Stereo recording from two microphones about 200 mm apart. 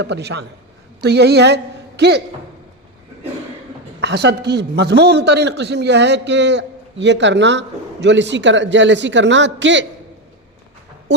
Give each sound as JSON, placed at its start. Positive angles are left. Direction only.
{"t": 0.0, "sound": "a man's voice", "side_deg": -55}
{"t": 4.0, "sound": "a man's voice", "side_deg": -60}